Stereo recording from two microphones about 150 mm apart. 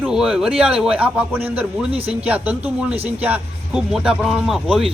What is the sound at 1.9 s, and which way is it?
Speech, 40° right (ahead or behind).